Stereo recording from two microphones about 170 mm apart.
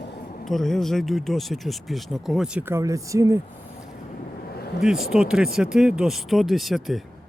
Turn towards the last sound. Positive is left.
turn(degrees=0)  # may be behind; listen again after turning